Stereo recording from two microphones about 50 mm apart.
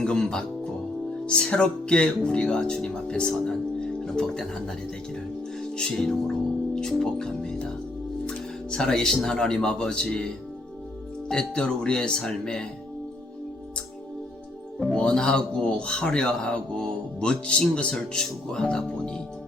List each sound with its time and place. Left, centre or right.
0.0 s music: centre
1.3 s speech: centre
5.7 s a man's voice: centre
11.3 s a man's voice: centre
14.9 s a man's voice: centre